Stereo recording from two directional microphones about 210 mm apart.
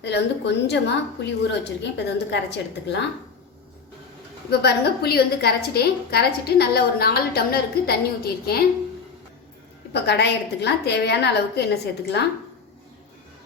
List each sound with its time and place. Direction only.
0.0 s a woman's voice: 55° left (ahead or behind)
4.6 s a woman's voice: 50° left (ahead or behind)
9.9 s a woman's voice: 50° left (ahead or behind)